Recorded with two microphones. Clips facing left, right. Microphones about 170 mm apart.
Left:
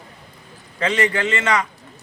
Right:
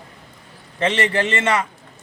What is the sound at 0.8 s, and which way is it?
Speech, 30° right (ahead or behind).